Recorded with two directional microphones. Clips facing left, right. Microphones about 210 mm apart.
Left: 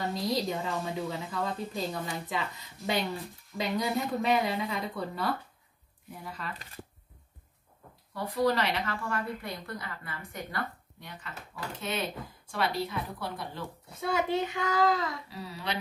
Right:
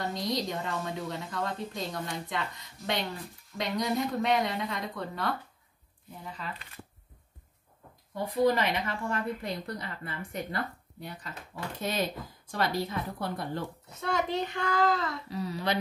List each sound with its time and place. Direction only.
0.0 s a woman's voice: 5° left (ahead or behind)
8.1 s a woman's voice: 15° right (ahead or behind); by 13.7 s 50° right (ahead or behind)
14.0 s a child's voice: 5° left (ahead or behind)